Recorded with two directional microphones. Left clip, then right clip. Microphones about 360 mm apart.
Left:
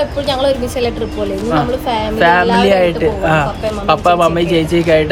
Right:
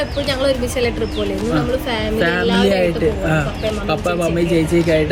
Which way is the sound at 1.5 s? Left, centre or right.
Left.